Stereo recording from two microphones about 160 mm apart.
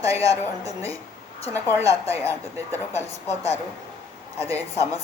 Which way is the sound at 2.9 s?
45° left (ahead or behind).